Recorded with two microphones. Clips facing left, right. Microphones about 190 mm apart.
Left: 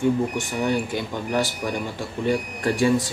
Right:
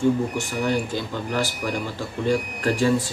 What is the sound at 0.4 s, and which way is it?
Speech, 20° left (ahead or behind).